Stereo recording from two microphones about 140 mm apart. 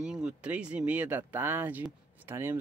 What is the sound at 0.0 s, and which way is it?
Speech, 5° right (ahead or behind).